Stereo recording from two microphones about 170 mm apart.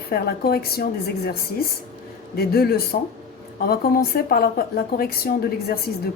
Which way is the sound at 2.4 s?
65° left (ahead or behind).